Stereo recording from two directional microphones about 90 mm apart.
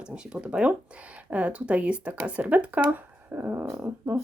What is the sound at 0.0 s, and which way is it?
A woman's voice, 10° right (ahead or behind).